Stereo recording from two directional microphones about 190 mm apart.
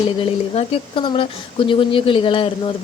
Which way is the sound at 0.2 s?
25° left (ahead or behind).